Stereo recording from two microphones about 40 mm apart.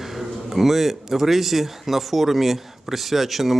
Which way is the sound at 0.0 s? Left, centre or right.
Centre.